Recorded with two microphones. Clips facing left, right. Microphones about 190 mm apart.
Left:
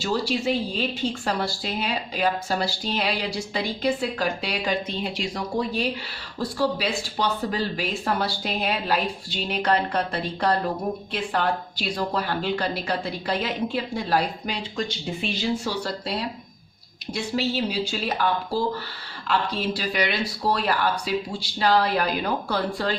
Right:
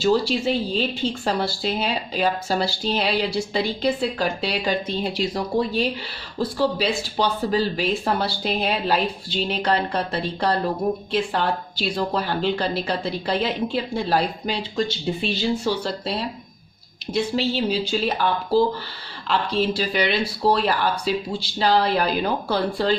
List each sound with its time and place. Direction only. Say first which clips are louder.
0.0 s speech: right 5 dB; 25° right (ahead or behind)
17.2 s speech: right 3 dB; 25° right (ahead or behind)
19.7 s speech: right 3 dB; 25° right (ahead or behind)